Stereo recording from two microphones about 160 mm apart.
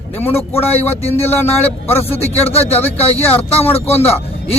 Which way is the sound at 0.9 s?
40° left (ahead or behind).